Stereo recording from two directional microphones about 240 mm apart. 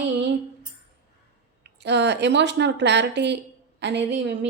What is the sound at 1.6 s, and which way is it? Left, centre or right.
A woman's voice, right.